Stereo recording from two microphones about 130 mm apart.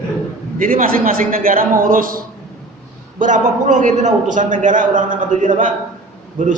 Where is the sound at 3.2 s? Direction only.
75° right (ahead or behind); by 5.5 s 90° right.